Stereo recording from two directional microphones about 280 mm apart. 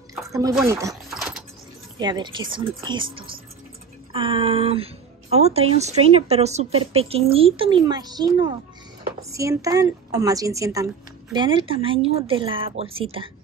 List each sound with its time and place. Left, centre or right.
0.3 s a woman's voice: centre
0.6 s a sound: centre
2.0 s a woman's voice: centre